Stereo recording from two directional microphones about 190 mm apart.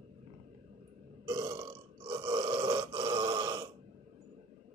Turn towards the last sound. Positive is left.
turn(degrees=-20)  # may be behind; listen again after turning